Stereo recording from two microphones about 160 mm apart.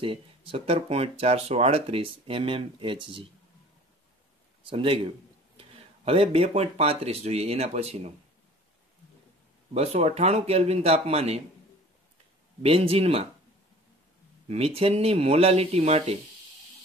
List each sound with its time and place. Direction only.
0.0 s speech: 35° right (ahead or behind)
4.6 s speech: 35° right (ahead or behind)
9.8 s speech: 40° right (ahead or behind)
12.6 s speech: 35° right (ahead or behind)
14.5 s speech: 40° right (ahead or behind)